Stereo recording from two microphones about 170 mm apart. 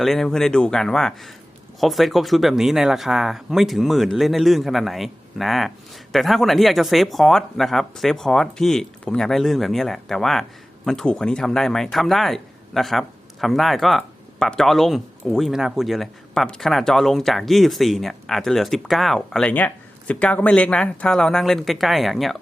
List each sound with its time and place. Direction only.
0.0 s speech: centre (ahead or behind)